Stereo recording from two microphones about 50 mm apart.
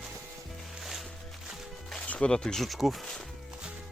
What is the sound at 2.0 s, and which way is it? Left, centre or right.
Music, left.